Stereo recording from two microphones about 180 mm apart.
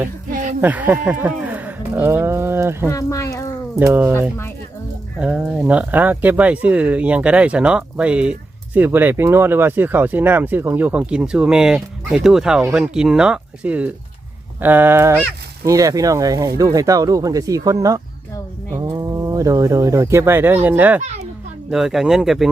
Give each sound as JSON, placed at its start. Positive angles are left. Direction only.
{"t": 0.6, "sound": "speech", "side_deg": -10}
{"t": 2.9, "sound": "a sound", "side_deg": 15}
{"t": 3.8, "sound": "speech", "side_deg": -10}
{"t": 5.2, "sound": "speech", "side_deg": -5}
{"t": 21.0, "sound": "a child's voice", "side_deg": -35}
{"t": 21.7, "sound": "speech", "side_deg": 0}